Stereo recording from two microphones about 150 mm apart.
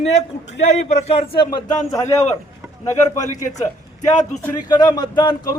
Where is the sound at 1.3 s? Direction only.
30° left (ahead or behind).